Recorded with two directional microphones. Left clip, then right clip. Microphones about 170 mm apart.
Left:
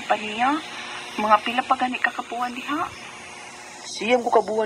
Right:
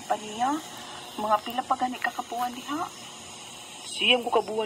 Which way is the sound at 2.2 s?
35° left (ahead or behind).